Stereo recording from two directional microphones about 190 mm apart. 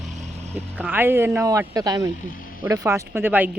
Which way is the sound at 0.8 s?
10° right (ahead or behind).